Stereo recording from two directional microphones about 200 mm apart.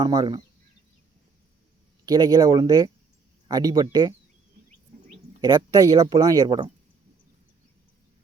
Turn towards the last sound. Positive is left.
turn(degrees=-20)  # may be behind; listen again after turning